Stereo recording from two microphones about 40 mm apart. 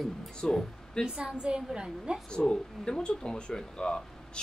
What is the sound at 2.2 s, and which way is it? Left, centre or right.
Speech, left.